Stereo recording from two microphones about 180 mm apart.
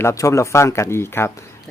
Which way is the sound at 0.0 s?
15° left (ahead or behind).